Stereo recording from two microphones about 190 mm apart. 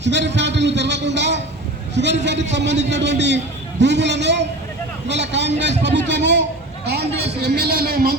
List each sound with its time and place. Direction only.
0.0 s a man's voice: 70° right (ahead or behind)